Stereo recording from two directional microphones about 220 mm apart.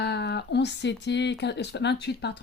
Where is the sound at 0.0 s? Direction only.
50° left (ahead or behind).